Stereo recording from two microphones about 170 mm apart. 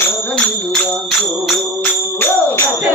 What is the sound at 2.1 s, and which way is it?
Music, 15° left (ahead or behind).